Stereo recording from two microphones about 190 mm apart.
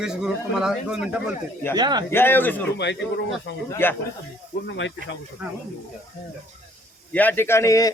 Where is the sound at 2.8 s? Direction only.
65° left (ahead or behind).